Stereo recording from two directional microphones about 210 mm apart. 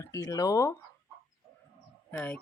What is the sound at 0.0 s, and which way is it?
Speech, 15° left (ahead or behind).